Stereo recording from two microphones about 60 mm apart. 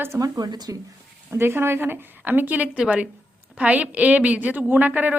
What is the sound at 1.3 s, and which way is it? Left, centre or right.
A woman's voice, right.